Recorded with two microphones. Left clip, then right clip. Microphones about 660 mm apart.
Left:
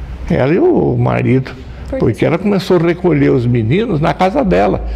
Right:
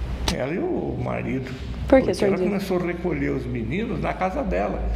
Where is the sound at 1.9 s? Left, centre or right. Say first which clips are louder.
Right 1 dB; right.